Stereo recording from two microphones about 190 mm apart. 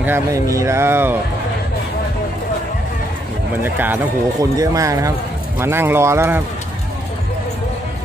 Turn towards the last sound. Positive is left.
turn(degrees=-10)  # may be behind; listen again after turning